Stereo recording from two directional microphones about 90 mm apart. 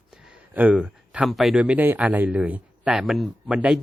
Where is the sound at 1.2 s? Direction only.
Centre (ahead or behind).